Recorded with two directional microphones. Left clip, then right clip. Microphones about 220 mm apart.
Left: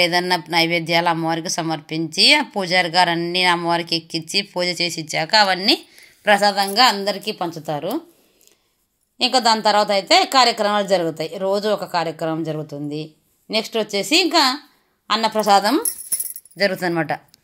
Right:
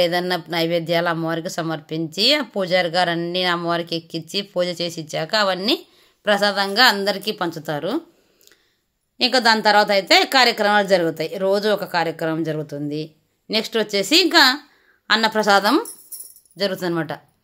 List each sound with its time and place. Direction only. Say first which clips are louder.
0.0 s a woman's voice: left 2 dB; 15° right (ahead or behind)
9.2 s a woman's voice: even; 10° right (ahead or behind)